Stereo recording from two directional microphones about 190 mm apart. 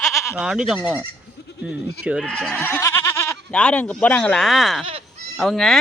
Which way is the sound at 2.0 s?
Centre (ahead or behind).